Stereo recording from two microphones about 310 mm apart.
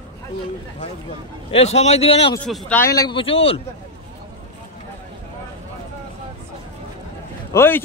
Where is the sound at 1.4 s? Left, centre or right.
Centre.